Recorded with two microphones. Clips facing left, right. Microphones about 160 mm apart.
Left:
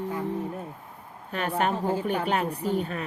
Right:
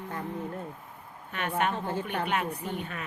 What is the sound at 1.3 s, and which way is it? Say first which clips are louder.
A woman's voice: left 3 dB; 35° left (ahead or behind).